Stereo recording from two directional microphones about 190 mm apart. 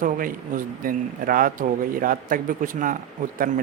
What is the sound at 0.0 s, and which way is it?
Speech, 45° right (ahead or behind).